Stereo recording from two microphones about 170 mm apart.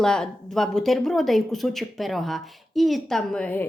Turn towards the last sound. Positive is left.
turn(degrees=10)  # may be behind; listen again after turning